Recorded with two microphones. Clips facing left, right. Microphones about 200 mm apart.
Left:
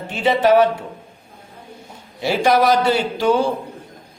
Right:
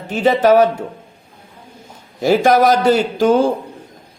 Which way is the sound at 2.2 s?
45° right (ahead or behind).